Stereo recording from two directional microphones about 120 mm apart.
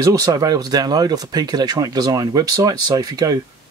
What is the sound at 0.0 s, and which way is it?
Speech, 30° right (ahead or behind).